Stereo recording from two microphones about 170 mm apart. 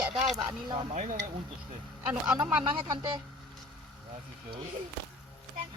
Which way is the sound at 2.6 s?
25° right (ahead or behind).